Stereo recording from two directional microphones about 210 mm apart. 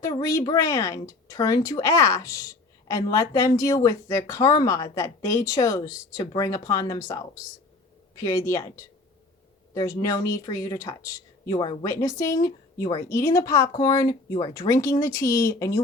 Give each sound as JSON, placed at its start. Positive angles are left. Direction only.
{"t": 0.0, "sound": "speech", "side_deg": 15}